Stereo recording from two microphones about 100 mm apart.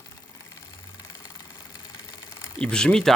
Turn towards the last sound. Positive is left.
turn(degrees=5)  # may be behind; listen again after turning